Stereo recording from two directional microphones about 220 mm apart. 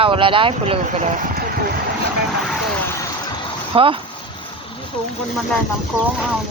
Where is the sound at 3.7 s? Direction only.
25° right (ahead or behind).